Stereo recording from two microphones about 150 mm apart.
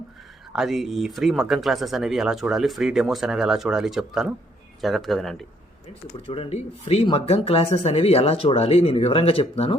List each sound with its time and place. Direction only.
0.5 s speech: 5° right (ahead or behind)
6.2 s speech: 40° left (ahead or behind)